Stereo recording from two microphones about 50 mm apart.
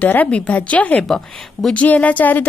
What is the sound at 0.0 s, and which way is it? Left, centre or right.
A woman's voice, left.